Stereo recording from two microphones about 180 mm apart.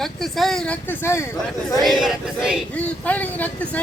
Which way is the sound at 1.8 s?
5° right (ahead or behind).